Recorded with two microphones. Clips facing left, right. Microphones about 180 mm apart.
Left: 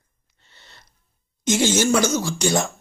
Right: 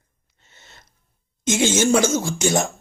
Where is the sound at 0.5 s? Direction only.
45° right (ahead or behind).